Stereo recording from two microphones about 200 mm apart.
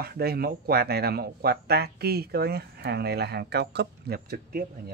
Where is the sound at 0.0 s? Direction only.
50° right (ahead or behind).